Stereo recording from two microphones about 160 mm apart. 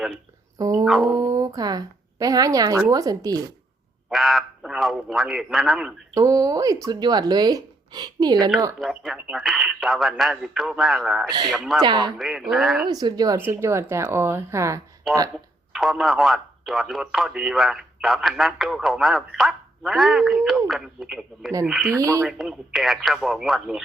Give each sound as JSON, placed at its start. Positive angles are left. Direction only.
{"t": 0.6, "sound": "speech", "side_deg": -20}
{"t": 0.9, "sound": "a man's voice", "side_deg": 0}
{"t": 1.1, "sound": "speech", "side_deg": -20}
{"t": 4.1, "sound": "a man's voice", "side_deg": 0}
{"t": 6.1, "sound": "speech", "side_deg": -20}
{"t": 8.8, "sound": "a man's voice", "side_deg": 0}
{"t": 11.3, "sound": "speech", "side_deg": -25}
{"t": 12.1, "sound": "a man's voice", "side_deg": 0}
{"t": 12.9, "sound": "speech", "side_deg": -25}
{"t": 15.1, "sound": "a man's voice", "side_deg": 0}
{"t": 21.8, "sound": "speech", "side_deg": -20}
{"t": 22.2, "sound": "a man's voice", "side_deg": 0}